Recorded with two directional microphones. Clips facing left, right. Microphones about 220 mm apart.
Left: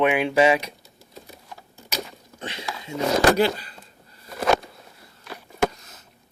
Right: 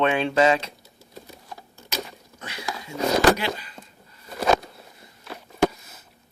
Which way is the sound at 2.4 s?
25° left (ahead or behind).